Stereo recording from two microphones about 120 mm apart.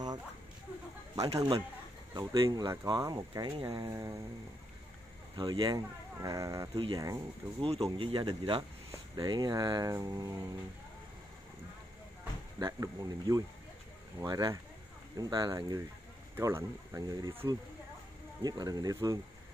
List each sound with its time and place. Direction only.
1.3 s speech: 40° right (ahead or behind)
5.3 s speech: 35° right (ahead or behind)
7.6 s speech: 50° right (ahead or behind); by 10.4 s 30° right (ahead or behind)
12.5 s speech: 30° right (ahead or behind)